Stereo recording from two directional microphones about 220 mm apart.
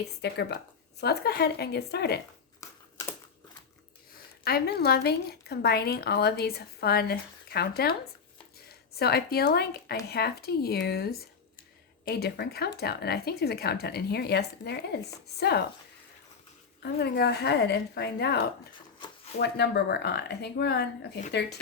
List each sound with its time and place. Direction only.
0.0 s a woman's voice: 50° left (ahead or behind)
2.6 s typewriter: 15° left (ahead or behind)
4.1 s a woman's voice: 45° left (ahead or behind)
9.0 s a woman's voice: 45° left (ahead or behind)
16.8 s a woman's voice: 45° left (ahead or behind)